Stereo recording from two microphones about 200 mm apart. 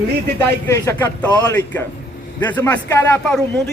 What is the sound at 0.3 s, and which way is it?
A man's voice, 10° left (ahead or behind).